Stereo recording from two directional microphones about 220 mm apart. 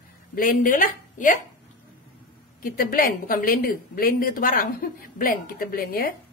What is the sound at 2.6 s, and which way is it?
A woman's voice, 40° left (ahead or behind).